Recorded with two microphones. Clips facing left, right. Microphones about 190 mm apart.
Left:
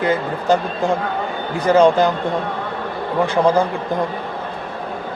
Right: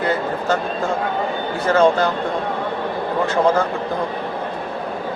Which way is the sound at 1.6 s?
15° left (ahead or behind).